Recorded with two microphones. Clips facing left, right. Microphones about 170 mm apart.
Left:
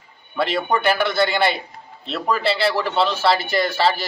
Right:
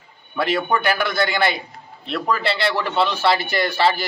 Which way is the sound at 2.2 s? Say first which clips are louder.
Left 2 dB; 5° left (ahead or behind).